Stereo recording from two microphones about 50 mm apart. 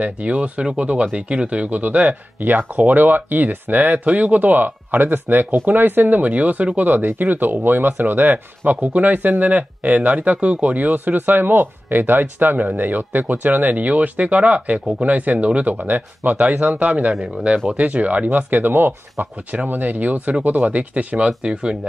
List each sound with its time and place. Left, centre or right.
0.0 s speech: right
17.1 s speech: centre
17.6 s speech: right
21.3 s speech: centre